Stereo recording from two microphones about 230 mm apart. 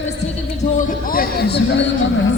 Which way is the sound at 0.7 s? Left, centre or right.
Left.